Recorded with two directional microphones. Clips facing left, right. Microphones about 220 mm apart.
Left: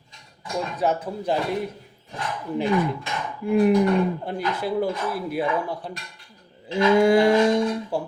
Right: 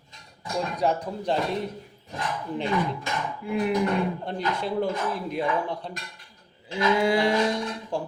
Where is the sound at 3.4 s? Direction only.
45° left (ahead or behind).